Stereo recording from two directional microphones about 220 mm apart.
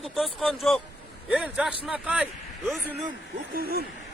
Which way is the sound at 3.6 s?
45° right (ahead or behind).